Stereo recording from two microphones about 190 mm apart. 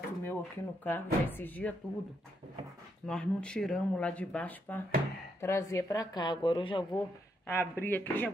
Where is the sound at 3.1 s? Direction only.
5° left (ahead or behind); by 6.8 s 25° left (ahead or behind).